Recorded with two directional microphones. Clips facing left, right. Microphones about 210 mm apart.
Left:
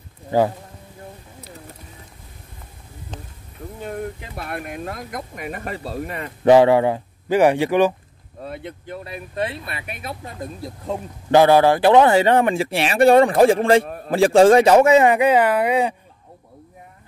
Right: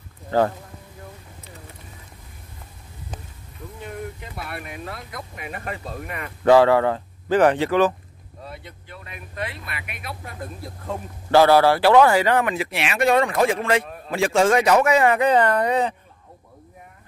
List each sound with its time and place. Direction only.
0.3 s speech: 15° left (ahead or behind)
4.4 s speech: 50° left (ahead or behind); by 6.3 s 30° left (ahead or behind)
6.4 s speech: 20° left (ahead or behind)
8.5 s speech: 55° left (ahead or behind)
8.9 s speech: 35° left (ahead or behind); by 16.0 s 10° left (ahead or behind)